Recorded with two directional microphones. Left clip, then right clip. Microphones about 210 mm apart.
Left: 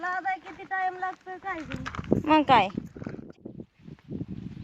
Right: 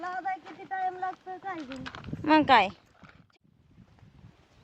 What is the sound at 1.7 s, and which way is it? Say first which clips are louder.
Speech: left 4 dB; 10° right (ahead or behind).